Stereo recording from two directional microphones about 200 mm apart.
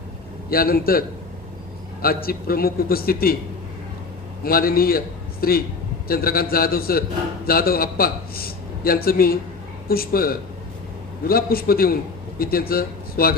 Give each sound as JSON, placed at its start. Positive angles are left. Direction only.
{"t": 0.5, "sound": "a man's voice", "side_deg": 50}
{"t": 4.4, "sound": "a man's voice", "side_deg": 45}